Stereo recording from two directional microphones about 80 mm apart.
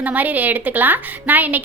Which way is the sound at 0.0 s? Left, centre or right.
Centre.